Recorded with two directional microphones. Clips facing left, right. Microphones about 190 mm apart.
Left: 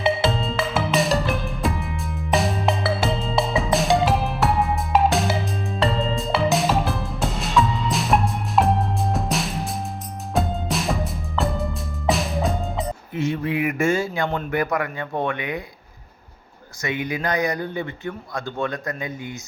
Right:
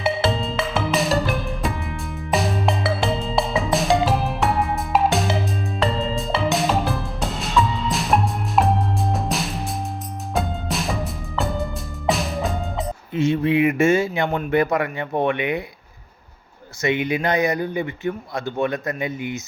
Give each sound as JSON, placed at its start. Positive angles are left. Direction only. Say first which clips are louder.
{"t": 0.0, "sound": "music", "louder": "even", "side_deg": 0}
{"t": 13.2, "sound": "speech", "louder": "right 5 dB", "side_deg": -25}
{"t": 16.8, "sound": "speech", "louder": "right 4 dB", "side_deg": -25}